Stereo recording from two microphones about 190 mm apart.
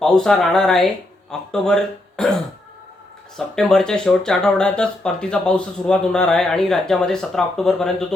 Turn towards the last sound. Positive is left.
turn(degrees=0)  # may be behind; listen again after turning